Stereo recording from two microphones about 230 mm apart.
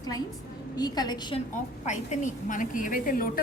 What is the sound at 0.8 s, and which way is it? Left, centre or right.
Speech, centre.